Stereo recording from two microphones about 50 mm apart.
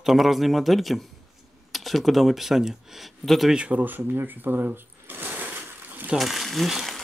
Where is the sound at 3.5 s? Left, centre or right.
Right.